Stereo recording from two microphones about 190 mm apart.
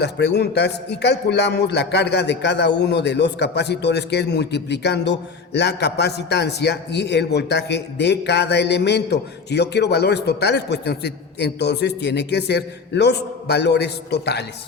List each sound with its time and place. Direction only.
0.0 s a man's voice: 60° left (ahead or behind)